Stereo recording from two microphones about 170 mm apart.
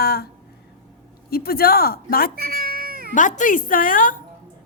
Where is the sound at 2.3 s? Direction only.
60° right (ahead or behind).